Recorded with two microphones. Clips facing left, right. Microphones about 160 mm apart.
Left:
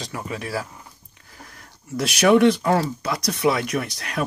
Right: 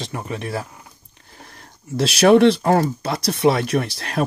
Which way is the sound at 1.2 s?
25° right (ahead or behind).